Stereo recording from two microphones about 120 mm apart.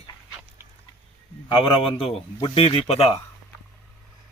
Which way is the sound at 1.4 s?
40° left (ahead or behind).